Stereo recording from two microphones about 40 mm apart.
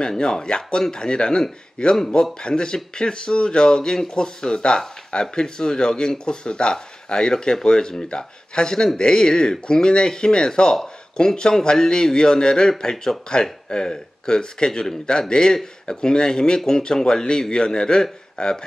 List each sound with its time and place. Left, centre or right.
0.2 s a man's voice: centre
12.9 s a man's voice: centre; by 18.5 s left